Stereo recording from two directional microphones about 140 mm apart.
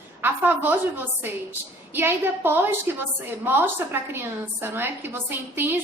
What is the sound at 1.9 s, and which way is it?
A woman's voice, 15° right (ahead or behind).